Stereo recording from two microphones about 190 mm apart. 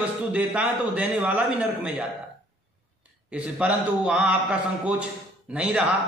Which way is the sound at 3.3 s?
5° right (ahead or behind).